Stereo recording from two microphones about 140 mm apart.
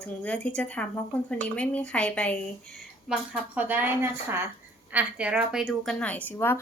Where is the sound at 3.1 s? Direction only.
10° right (ahead or behind).